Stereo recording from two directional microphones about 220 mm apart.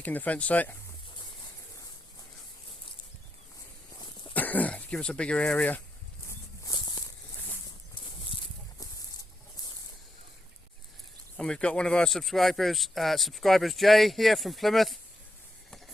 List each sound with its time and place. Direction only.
0.0 s speech: 5° left (ahead or behind)
4.4 s speech: 5° left (ahead or behind)
6.2 s a sound: 15° left (ahead or behind)
11.3 s speech: 5° left (ahead or behind)